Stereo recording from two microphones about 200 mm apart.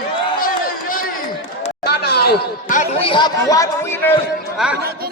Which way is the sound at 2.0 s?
55° left (ahead or behind).